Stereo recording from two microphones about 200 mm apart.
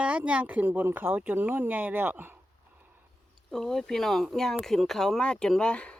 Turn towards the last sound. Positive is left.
turn(degrees=5)  # may be behind; listen again after turning